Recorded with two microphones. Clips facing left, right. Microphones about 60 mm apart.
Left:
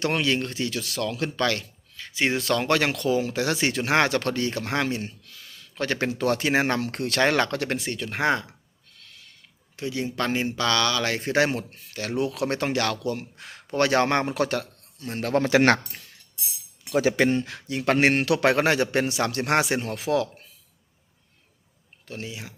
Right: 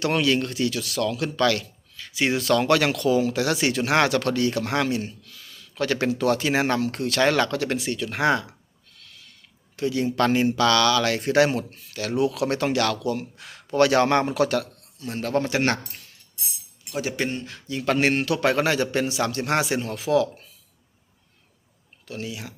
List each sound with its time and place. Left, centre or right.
0.0 s speech: left
7.2 s speech: left
9.8 s speech: centre
14.9 s a man's voice: left
15.3 s speech: left
17.2 s speech: left
17.7 s speech: left
18.1 s speech: left
18.4 s speech: left
22.0 s speech: left